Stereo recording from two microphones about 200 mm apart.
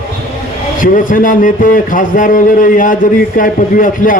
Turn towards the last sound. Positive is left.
turn(degrees=45)  # may be behind; listen again after turning